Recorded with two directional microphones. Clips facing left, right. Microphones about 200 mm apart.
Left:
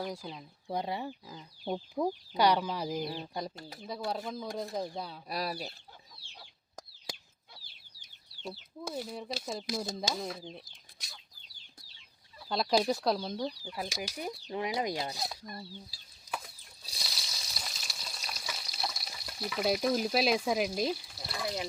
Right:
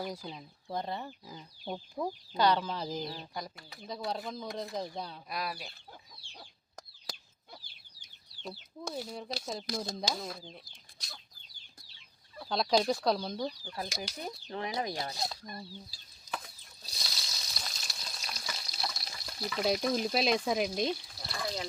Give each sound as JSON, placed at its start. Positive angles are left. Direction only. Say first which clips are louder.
{"t": 0.0, "sound": "speech", "louder": "left 1 dB", "side_deg": -5}
{"t": 0.7, "sound": "speech", "louder": "left 2 dB", "side_deg": 10}
{"t": 3.2, "sound": "speech", "louder": "left 4 dB", "side_deg": 30}
{"t": 3.8, "sound": "speech", "louder": "left 1 dB", "side_deg": 5}
{"t": 5.3, "sound": "speech", "louder": "left 4 dB", "side_deg": 35}
{"t": 8.4, "sound": "speech", "louder": "left 1 dB", "side_deg": 0}
{"t": 12.5, "sound": "speech", "louder": "even", "side_deg": 5}
{"t": 13.6, "sound": "speech", "louder": "left 1 dB", "side_deg": 15}
{"t": 15.9, "sound": "chicken", "louder": "left 1 dB", "side_deg": 5}
{"t": 16.9, "sound": "frying", "louder": "even", "side_deg": 5}